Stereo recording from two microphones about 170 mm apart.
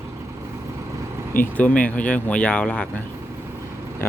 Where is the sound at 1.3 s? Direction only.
10° left (ahead or behind).